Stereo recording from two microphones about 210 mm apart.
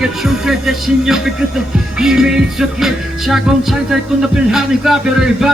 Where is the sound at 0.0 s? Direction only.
Centre (ahead or behind).